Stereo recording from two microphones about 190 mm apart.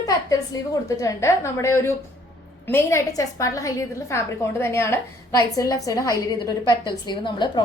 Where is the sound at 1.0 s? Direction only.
15° left (ahead or behind).